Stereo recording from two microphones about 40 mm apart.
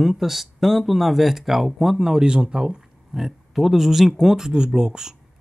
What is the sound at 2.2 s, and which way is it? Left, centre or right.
Speech, right.